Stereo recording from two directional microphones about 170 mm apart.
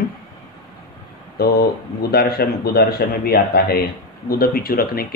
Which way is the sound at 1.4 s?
65° left (ahead or behind).